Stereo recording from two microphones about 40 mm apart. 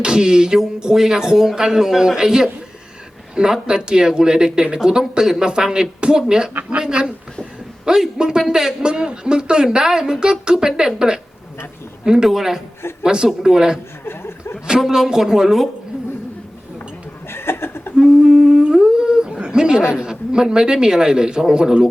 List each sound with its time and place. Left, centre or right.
0.0 s a man's voice: right
8.4 s a man's voice: centre
8.9 s a man's voice: right; by 12.6 s centre
13.0 s a man's voice: right
14.0 s chuckle: left
14.8 s a man's voice: centre
17.3 s chuckle: left
17.9 s speech: right
18.7 s humming: centre
19.4 s speech: right